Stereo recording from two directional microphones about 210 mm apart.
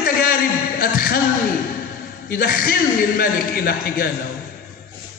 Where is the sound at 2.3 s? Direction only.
45° left (ahead or behind).